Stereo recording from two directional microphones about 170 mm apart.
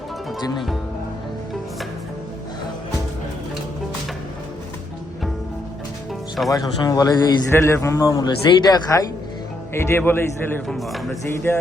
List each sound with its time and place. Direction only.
6.5 s a man's voice: 20° left (ahead or behind)
10.8 s a man's voice: centre (ahead or behind)